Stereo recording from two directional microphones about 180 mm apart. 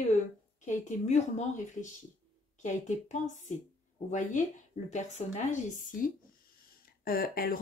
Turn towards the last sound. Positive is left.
turn(degrees=55)  # may be behind; listen again after turning